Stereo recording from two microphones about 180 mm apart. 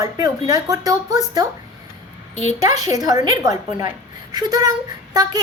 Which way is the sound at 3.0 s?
20° right (ahead or behind).